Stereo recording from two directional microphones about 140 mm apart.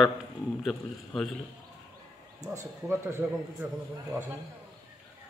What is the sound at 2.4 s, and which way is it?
A man's voice, 25° right (ahead or behind).